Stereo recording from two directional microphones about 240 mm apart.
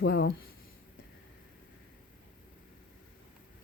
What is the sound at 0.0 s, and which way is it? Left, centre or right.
Speech, left.